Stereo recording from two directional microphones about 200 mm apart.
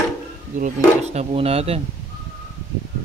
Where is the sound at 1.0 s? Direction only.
30° right (ahead or behind).